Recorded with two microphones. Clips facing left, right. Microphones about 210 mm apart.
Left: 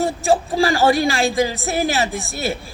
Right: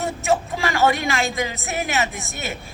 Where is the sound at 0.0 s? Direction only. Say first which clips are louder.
Left 4 dB; 35° left (ahead or behind).